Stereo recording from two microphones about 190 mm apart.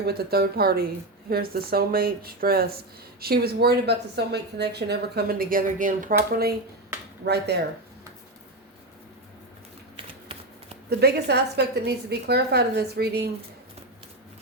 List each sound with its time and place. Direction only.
0.0 s a woman's voice: 55° right (ahead or behind)
7.3 s a woman's voice: 60° right (ahead or behind)
10.8 s a woman's voice: 60° right (ahead or behind)